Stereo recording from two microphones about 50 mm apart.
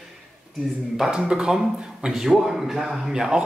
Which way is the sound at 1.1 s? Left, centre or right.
Centre.